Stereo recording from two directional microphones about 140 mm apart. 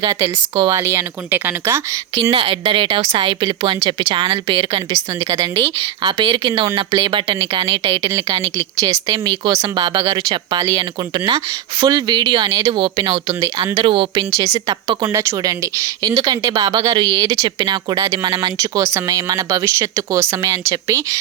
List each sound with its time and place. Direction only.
0.0 s a woman's voice: 30° right (ahead or behind)
2.3 s a woman's voice: 40° right (ahead or behind)
8.1 s a woman's voice: 20° right (ahead or behind)
14.3 s a woman's voice: 20° right (ahead or behind)